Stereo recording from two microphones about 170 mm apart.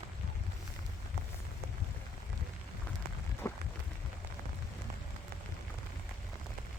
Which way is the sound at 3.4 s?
15° left (ahead or behind).